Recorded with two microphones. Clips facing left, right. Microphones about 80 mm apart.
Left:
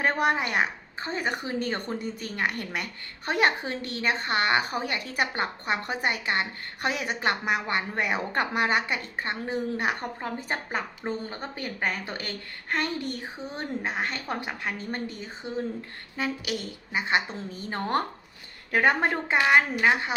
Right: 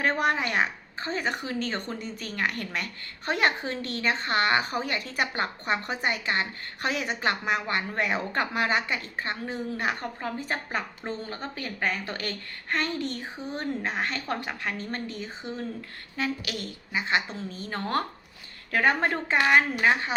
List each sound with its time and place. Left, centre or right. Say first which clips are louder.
0.0 s a woman's voice: left 1 dB; centre
13.6 s a woman's voice: even; centre